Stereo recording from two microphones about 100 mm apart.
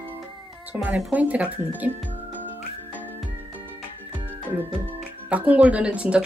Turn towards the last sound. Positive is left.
turn(degrees=-10)  # may be behind; listen again after turning